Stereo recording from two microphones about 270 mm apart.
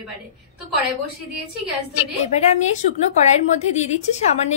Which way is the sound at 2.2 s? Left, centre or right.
Left.